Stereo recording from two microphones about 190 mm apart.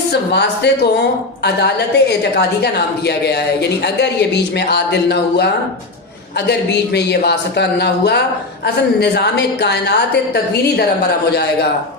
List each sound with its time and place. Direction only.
0.1 s speech: 60° left (ahead or behind)
6.5 s speech: 60° left (ahead or behind)